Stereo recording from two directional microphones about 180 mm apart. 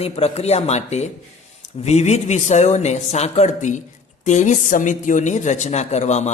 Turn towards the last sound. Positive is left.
turn(degrees=40)  # may be behind; listen again after turning